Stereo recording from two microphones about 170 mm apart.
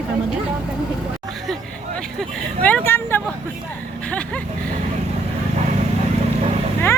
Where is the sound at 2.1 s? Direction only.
5° left (ahead or behind).